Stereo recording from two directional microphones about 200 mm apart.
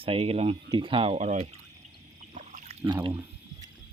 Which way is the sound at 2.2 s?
40° right (ahead or behind).